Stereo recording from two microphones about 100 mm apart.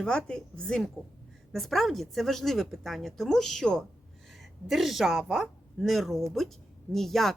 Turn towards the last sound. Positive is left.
turn(degrees=5)  # may be behind; listen again after turning